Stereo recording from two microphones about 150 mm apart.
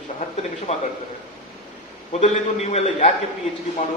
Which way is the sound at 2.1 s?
45° left (ahead or behind).